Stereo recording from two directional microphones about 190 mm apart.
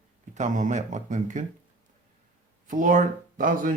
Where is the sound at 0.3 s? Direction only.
40° right (ahead or behind).